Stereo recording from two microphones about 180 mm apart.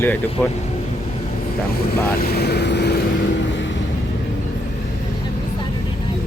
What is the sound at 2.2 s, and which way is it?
Speech, 60° left (ahead or behind).